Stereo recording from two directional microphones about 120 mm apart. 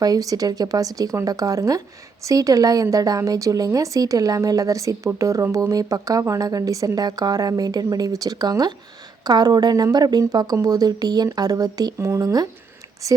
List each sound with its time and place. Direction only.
0.0 s speech: 30° right (ahead or behind)